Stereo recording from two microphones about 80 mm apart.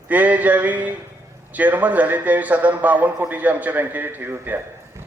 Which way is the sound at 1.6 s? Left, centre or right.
Centre.